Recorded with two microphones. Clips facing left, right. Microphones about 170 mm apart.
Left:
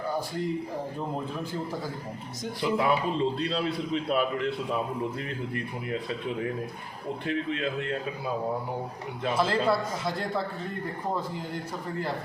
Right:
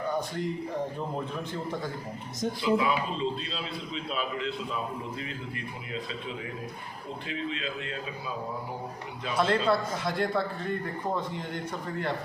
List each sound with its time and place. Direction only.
2.6 s a man's voice: 60° left (ahead or behind)
7.3 s a man's voice: 55° left (ahead or behind)
9.4 s speech: centre (ahead or behind)